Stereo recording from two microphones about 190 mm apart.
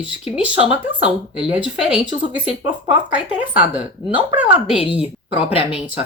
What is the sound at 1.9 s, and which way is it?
Speech, 25° right (ahead or behind).